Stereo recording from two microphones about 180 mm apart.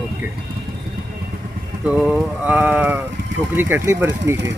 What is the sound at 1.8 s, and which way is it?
Speech, 5° right (ahead or behind).